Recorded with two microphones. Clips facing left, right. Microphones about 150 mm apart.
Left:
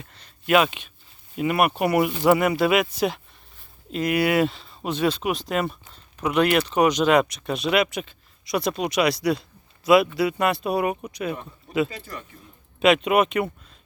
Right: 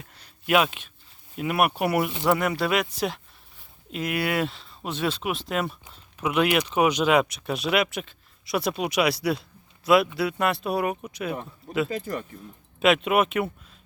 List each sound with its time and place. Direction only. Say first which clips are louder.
0.0 s a sound: left 2 dB; 5° right (ahead or behind)
1.4 s speech: left 2 dB; 5° right (ahead or behind)
11.9 s speech: right 8 dB; 50° right (ahead or behind)
12.8 s speech: left 2 dB; centre (ahead or behind)